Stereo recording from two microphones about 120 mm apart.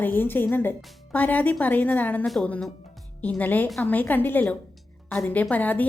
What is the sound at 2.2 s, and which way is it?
A woman's voice, centre (ahead or behind).